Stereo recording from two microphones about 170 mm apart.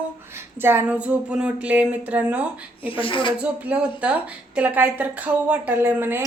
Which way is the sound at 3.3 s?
5° right (ahead or behind).